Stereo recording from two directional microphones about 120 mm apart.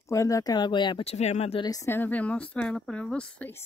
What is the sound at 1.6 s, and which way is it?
Speech, 30° left (ahead or behind).